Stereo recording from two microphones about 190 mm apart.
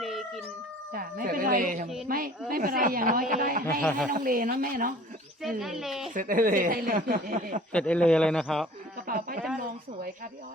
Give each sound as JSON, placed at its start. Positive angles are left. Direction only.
{"t": 0.0, "sound": "howl", "side_deg": 0}
{"t": 0.9, "sound": "music", "side_deg": -50}
{"t": 2.0, "sound": "a sound", "side_deg": -50}
{"t": 2.5, "sound": "speech", "side_deg": -50}
{"t": 3.7, "sound": "a man's voice", "side_deg": 5}
{"t": 4.1, "sound": "speech", "side_deg": -45}
{"t": 5.4, "sound": "a man's voice", "side_deg": 0}
{"t": 6.1, "sound": "speech", "side_deg": -45}
{"t": 7.7, "sound": "a man's voice", "side_deg": 5}
{"t": 9.0, "sound": "a sound", "side_deg": -45}